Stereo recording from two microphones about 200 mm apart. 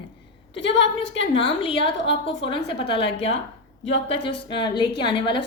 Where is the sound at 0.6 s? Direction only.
65° left (ahead or behind).